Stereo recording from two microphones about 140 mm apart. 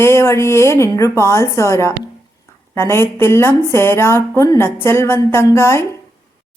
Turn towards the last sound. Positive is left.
turn(degrees=15)  # may be behind; listen again after turning